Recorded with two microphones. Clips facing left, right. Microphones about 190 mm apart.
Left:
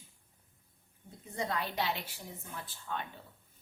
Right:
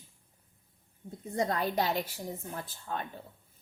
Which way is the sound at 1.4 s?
45° right (ahead or behind).